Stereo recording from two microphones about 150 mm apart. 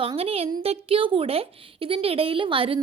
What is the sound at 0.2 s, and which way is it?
A woman's voice, 40° right (ahead or behind).